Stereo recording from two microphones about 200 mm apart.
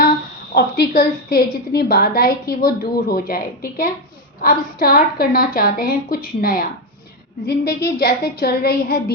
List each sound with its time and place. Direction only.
0.5 s a woman's voice: 50° left (ahead or behind)